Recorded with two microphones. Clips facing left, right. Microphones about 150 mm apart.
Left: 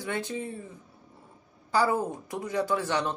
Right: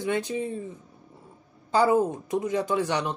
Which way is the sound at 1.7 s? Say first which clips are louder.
Right 5 dB; 20° right (ahead or behind).